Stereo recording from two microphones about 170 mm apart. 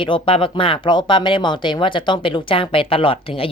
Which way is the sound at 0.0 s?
30° left (ahead or behind).